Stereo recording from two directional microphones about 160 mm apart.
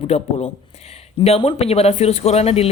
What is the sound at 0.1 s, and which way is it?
Speech, 40° left (ahead or behind).